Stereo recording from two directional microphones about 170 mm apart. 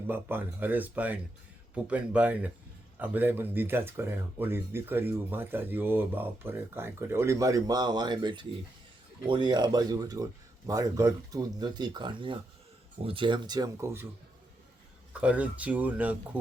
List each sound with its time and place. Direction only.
0.1 s speech: 10° right (ahead or behind)
15.1 s speech: 5° right (ahead or behind)